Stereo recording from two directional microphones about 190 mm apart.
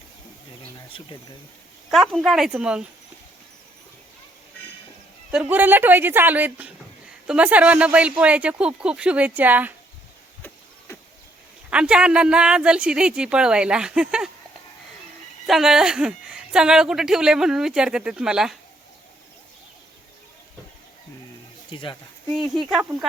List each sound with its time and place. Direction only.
0.9 s speech: 25° left (ahead or behind)
1.9 s a woman's voice: centre (ahead or behind)
5.3 s speech: 5° right (ahead or behind)
11.7 s a woman's voice: 5° right (ahead or behind)
15.4 s a woman's voice: centre (ahead or behind)
21.7 s speech: 25° left (ahead or behind)
22.7 s a woman's voice: 5° right (ahead or behind)